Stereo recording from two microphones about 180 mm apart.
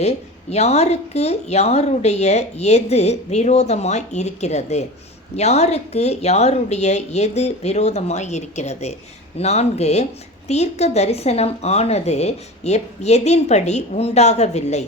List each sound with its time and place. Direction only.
0.5 s speech: 35° left (ahead or behind)